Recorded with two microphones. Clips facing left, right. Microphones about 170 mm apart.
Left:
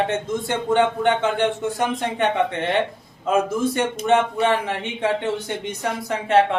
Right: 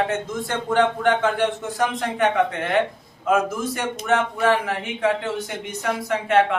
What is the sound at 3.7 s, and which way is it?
Speech, 25° left (ahead or behind).